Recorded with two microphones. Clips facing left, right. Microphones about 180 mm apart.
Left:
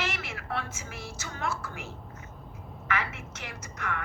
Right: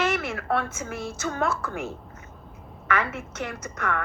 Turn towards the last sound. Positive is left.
turn(degrees=-55)  # may be behind; listen again after turning